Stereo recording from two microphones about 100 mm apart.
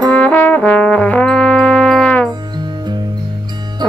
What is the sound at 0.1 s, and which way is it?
Trombone, 15° left (ahead or behind).